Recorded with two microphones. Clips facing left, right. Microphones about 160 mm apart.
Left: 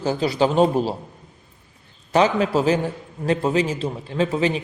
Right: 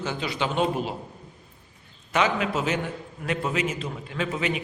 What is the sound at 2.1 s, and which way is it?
A man's voice, 35° left (ahead or behind).